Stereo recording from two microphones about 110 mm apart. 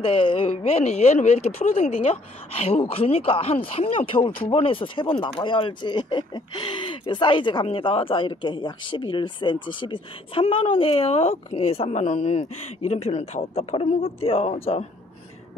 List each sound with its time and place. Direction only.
0.0 s speech: 50° left (ahead or behind)